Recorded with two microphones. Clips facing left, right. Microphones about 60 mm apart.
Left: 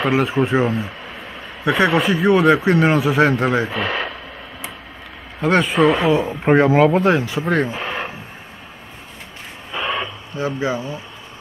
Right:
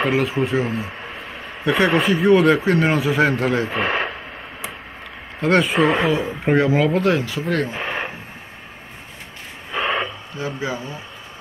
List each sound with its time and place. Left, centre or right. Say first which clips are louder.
0.1 s speech: left 2 dB; left
1.6 s speech: left 1 dB; centre
3.7 s speech: right 1 dB; right
5.4 s speech: left 1 dB; centre
6.2 s speech: left 3 dB; left
6.9 s speech: left 2 dB; left
7.7 s a sound: even; right
9.7 s a sound: right 1 dB; right
10.3 s speech: left 6 dB; left